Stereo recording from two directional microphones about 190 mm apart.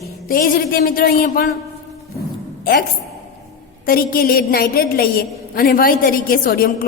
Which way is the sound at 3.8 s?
50° left (ahead or behind).